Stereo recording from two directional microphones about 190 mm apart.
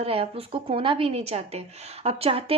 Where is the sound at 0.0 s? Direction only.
30° right (ahead or behind).